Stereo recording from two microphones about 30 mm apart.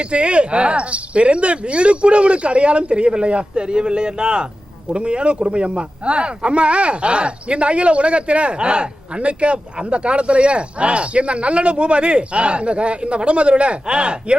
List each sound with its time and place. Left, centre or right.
0.0 s speech: right